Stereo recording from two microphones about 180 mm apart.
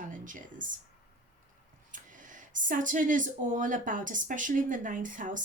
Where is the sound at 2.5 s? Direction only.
45° right (ahead or behind).